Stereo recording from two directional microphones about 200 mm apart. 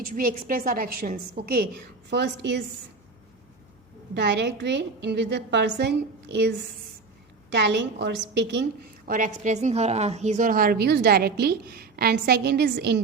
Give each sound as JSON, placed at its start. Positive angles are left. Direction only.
{"t": 0.2, "sound": "a woman's voice", "side_deg": -45}
{"t": 4.1, "sound": "a woman's voice", "side_deg": -60}
{"t": 7.5, "sound": "a woman's voice", "side_deg": -60}
{"t": 9.0, "sound": "a woman's voice", "side_deg": -40}